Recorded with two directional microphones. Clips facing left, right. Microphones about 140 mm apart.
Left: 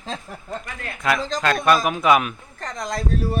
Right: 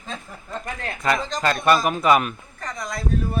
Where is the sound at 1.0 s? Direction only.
Centre (ahead or behind).